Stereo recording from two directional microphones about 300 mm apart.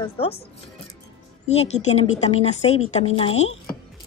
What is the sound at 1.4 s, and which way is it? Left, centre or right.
A woman's voice, left.